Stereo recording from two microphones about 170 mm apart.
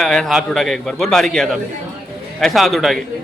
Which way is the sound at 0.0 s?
Centre (ahead or behind).